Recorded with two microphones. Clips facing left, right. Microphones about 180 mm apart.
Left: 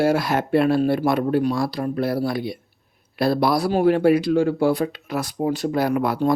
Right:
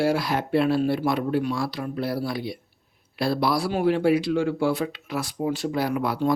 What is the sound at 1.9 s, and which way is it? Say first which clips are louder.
Speech: left 4 dB; 50° left (ahead or behind).